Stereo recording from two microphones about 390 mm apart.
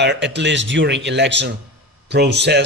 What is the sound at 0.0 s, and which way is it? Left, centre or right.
Speech, right.